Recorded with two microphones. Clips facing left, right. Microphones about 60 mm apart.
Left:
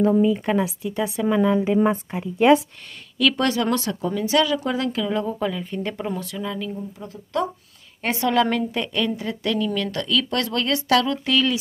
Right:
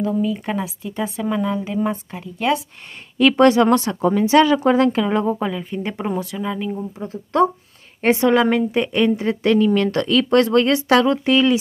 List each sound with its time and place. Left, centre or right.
0.3 s a woman's voice: centre
3.2 s speech: right
5.4 s a woman's voice: centre